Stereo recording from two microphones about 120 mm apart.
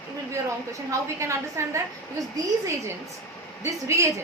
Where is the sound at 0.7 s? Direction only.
25° right (ahead or behind).